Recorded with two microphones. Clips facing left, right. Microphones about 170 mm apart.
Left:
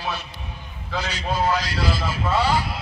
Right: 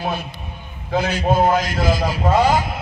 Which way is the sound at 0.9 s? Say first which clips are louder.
Right 8 dB; 50° right (ahead or behind).